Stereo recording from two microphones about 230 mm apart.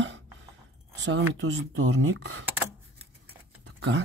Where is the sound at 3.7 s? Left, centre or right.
Right.